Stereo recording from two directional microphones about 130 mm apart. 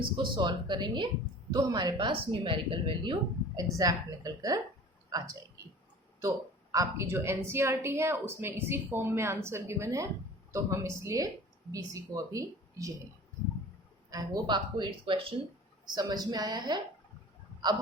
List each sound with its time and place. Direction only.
0.0 s a woman's voice: 40° right (ahead or behind)
14.1 s a woman's voice: 30° right (ahead or behind)
15.9 s a woman's voice: 30° right (ahead or behind)